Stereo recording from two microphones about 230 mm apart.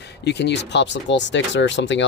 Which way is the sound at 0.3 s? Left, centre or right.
Left.